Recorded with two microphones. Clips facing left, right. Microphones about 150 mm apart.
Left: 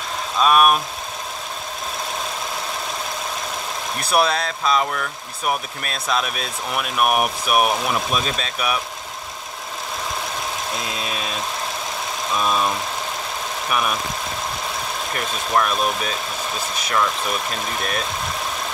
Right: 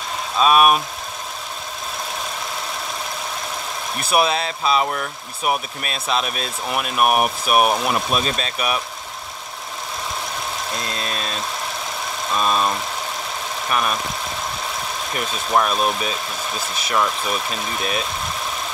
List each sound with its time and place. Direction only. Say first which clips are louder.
0.4 s speech: right 1 dB; 5° right (ahead or behind)
4.0 s speech: even; 5° right (ahead or behind)
10.8 s speech: even; 5° left (ahead or behind)
12.4 s speech: right 1 dB; centre (ahead or behind)
15.1 s speech: right 2 dB; 10° right (ahead or behind)